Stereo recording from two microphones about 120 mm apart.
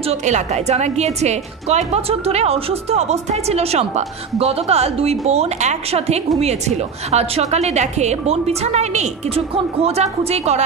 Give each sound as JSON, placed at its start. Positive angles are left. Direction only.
{"t": 0.1, "sound": "a woman's voice", "side_deg": -75}